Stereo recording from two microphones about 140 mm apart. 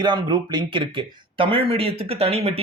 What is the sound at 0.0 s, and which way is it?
Speech, 35° right (ahead or behind).